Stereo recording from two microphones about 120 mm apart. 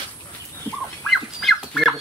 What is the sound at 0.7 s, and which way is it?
Livestock, 20° left (ahead or behind).